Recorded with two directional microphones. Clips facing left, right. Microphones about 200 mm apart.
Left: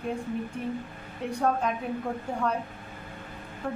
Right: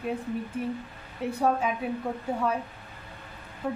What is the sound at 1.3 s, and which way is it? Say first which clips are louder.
A woman's voice: right 1 dB; 5° right (ahead or behind).